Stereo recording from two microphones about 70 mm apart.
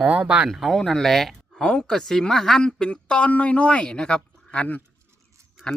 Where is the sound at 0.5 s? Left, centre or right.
Centre.